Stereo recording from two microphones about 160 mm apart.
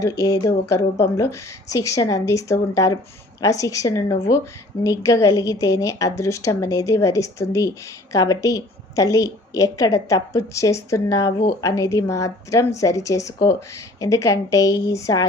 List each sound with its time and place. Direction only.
0.0 s a woman's voice: 20° left (ahead or behind)